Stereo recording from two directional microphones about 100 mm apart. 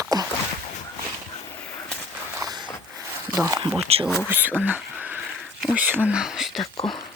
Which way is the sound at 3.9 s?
90° right.